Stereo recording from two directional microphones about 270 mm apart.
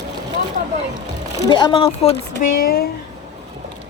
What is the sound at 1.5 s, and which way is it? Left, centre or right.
Speech, centre.